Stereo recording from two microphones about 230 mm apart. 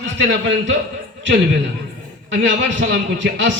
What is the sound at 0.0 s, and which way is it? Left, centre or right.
Speech, right.